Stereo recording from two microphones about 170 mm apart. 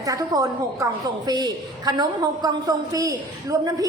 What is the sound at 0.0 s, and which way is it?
A woman's voice, 20° right (ahead or behind).